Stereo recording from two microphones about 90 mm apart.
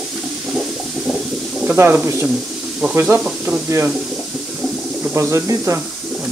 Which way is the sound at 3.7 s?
30° right (ahead or behind).